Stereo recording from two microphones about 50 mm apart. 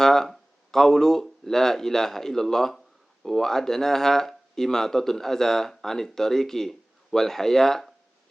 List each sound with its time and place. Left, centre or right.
0.0 s speech: centre